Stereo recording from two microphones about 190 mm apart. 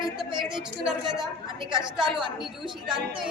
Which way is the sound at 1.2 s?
25° right (ahead or behind).